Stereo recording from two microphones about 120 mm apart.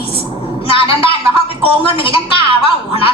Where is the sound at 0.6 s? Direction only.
50° left (ahead or behind).